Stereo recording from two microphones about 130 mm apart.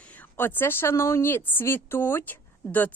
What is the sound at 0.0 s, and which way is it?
Speech, 10° left (ahead or behind).